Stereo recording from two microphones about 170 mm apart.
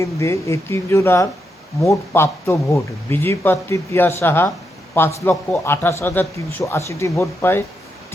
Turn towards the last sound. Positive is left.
turn(degrees=15)  # may be behind; listen again after turning